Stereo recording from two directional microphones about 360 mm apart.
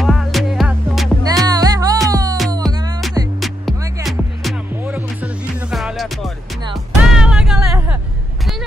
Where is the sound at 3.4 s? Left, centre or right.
Centre.